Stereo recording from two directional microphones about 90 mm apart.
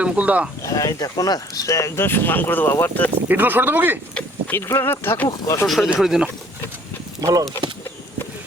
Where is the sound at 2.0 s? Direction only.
25° left (ahead or behind).